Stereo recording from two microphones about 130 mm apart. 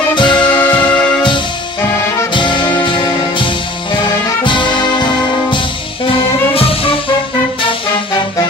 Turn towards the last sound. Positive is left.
turn(degrees=45)  # may be behind; listen again after turning